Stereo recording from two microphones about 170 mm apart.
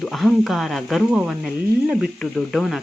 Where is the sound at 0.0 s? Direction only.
Centre (ahead or behind).